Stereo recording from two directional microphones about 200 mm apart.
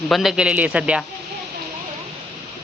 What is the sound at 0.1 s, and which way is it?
Speech, centre (ahead or behind).